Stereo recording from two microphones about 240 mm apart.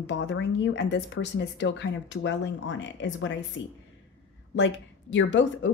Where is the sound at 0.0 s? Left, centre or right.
Left.